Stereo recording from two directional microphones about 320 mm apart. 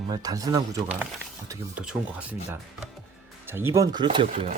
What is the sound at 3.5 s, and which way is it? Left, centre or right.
Speech, centre.